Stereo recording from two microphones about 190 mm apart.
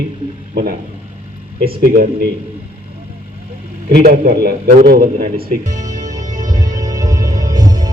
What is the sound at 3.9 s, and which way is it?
A man's voice, 50° right (ahead or behind).